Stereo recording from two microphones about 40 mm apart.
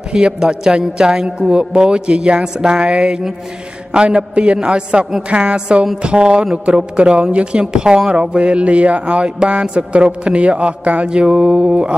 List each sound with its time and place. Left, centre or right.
0.1 s a man's voice: right
11.1 s a man's voice: right